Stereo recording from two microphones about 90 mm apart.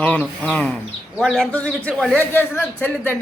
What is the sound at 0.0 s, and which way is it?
Speech, 15° left (ahead or behind).